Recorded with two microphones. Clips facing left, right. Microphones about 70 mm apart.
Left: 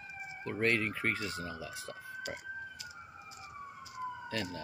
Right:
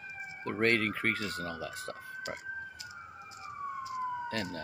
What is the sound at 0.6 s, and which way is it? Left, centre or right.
Speech, right.